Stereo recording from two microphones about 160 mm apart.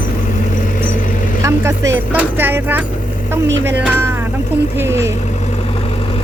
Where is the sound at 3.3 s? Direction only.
15° right (ahead or behind).